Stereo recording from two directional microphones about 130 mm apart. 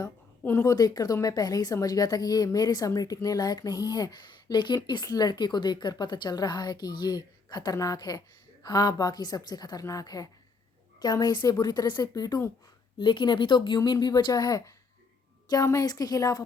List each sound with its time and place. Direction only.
0.0 s a woman's voice: 20° left (ahead or behind)